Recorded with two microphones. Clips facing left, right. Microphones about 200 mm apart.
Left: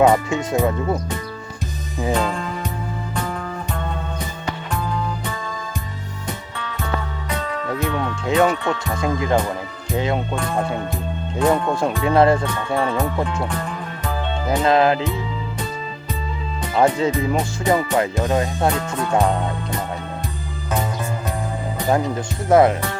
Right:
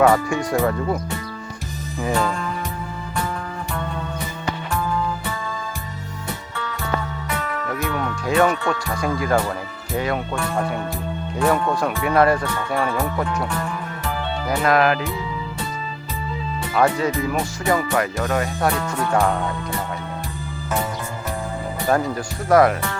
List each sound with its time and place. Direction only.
0.0 s speech: 20° left (ahead or behind)
2.0 s music: 20° left (ahead or behind)
7.3 s music: 20° left (ahead or behind)
9.9 s speech: 20° left (ahead or behind)
16.7 s speech: 25° left (ahead or behind)
22.4 s speech: 25° left (ahead or behind)